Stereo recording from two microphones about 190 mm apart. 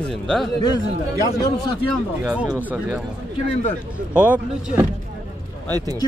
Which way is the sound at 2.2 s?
5° right (ahead or behind).